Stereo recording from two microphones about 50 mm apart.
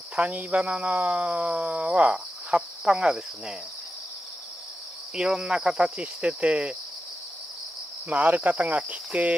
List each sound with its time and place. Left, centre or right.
0.1 s speech: right; by 3.5 s centre
5.1 s cricket: centre
8.1 s cricket: right